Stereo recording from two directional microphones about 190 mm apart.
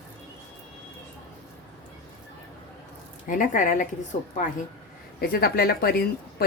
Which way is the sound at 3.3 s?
45° left (ahead or behind).